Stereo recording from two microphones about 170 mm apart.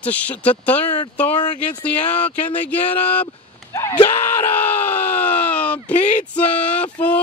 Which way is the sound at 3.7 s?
15° left (ahead or behind).